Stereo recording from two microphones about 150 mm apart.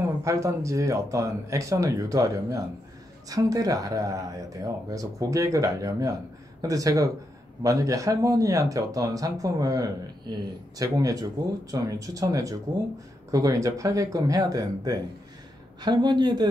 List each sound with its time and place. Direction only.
0.2 s speech: 20° right (ahead or behind)